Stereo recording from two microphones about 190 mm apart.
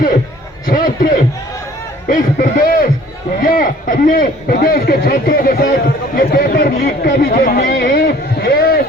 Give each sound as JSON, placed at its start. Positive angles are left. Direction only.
{"t": 0.7, "sound": "a sound", "side_deg": 45}
{"t": 2.0, "sound": "a man's voice", "side_deg": 45}
{"t": 7.3, "sound": "speech", "side_deg": 45}